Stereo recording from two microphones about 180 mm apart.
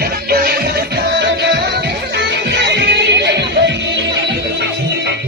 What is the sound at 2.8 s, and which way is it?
Music, 70° right (ahead or behind).